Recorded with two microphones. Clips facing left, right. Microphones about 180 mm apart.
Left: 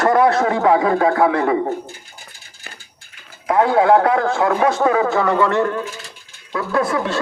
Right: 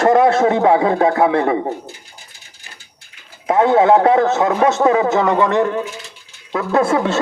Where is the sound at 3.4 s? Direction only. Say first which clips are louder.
Right 2 dB; 25° right (ahead or behind).